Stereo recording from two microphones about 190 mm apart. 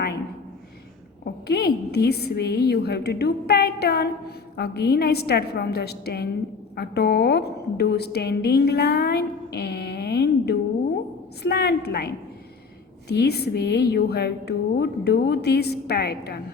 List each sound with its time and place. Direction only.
1.2 s a woman's voice: 60° left (ahead or behind)